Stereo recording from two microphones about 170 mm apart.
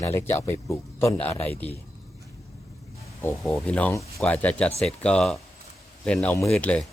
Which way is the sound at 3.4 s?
5° left (ahead or behind).